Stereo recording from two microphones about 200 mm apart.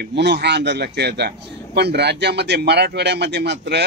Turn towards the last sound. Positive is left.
turn(degrees=-60)  # may be behind; listen again after turning